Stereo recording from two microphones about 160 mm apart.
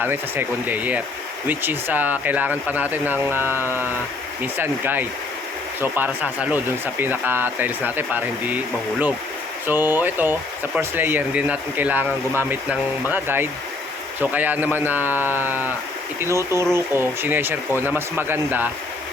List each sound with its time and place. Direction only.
0.0 s speech: 10° right (ahead or behind)